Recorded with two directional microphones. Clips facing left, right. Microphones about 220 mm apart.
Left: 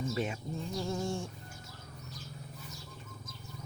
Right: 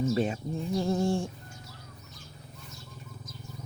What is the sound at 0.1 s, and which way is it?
Speech, 30° right (ahead or behind).